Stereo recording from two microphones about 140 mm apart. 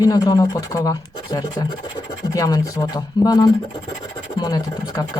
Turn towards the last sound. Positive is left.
turn(degrees=30)  # may be behind; listen again after turning